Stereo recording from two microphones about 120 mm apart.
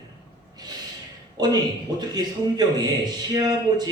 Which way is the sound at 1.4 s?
35° right (ahead or behind).